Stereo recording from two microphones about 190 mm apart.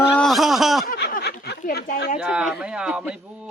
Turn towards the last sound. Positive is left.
turn(degrees=-5)  # may be behind; listen again after turning